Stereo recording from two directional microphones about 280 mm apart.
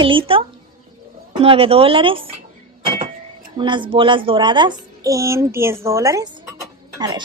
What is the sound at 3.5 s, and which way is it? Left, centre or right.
A child's voice, centre.